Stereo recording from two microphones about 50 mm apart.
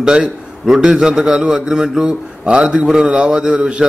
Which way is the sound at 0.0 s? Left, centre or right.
Centre.